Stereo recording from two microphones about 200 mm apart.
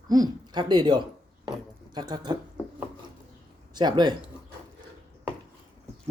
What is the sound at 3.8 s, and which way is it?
Speech, 20° right (ahead or behind).